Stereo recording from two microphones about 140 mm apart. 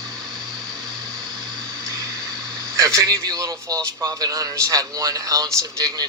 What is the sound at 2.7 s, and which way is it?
A man's voice, 25° right (ahead or behind).